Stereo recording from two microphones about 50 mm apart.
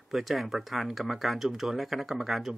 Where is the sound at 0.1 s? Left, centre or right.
Centre.